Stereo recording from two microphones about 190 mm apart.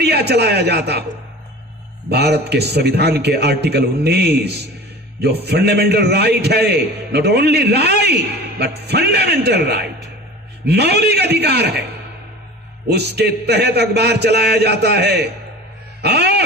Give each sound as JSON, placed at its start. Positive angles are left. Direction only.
{"t": 0.0, "sound": "a man's voice", "side_deg": -60}
{"t": 2.0, "sound": "a man's voice", "side_deg": -60}
{"t": 12.9, "sound": "a man's voice", "side_deg": -60}